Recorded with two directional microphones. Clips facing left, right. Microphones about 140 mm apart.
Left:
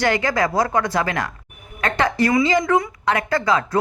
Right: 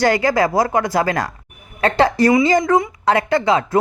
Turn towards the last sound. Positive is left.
turn(degrees=-25)  # may be behind; listen again after turning